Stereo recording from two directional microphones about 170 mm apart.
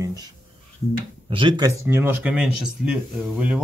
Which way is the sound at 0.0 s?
20° right (ahead or behind).